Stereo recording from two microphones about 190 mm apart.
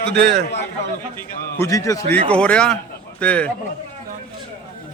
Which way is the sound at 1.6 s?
15° left (ahead or behind).